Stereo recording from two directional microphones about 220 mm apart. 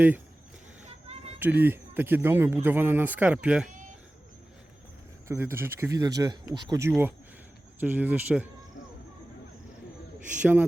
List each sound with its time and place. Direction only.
0.9 s a sound: 30° right (ahead or behind)
1.4 s speech: 10° right (ahead or behind)
5.3 s speech: 10° right (ahead or behind)
10.4 s speech: 10° right (ahead or behind)